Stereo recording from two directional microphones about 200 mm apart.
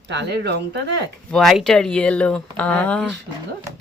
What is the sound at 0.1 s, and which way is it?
Speech, 55° right (ahead or behind).